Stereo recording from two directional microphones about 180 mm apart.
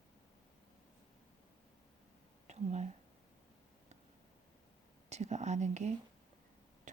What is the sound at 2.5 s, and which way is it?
Speech, 40° right (ahead or behind).